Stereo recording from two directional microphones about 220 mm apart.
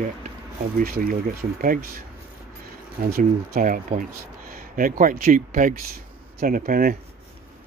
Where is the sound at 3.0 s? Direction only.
40° right (ahead or behind).